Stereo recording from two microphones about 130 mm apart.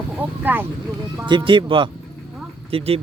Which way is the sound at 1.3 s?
40° right (ahead or behind).